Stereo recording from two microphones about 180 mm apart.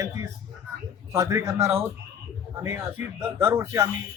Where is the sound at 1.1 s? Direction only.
15° right (ahead or behind).